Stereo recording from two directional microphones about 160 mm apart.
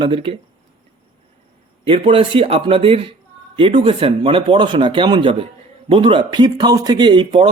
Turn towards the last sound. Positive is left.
turn(degrees=-30)  # may be behind; listen again after turning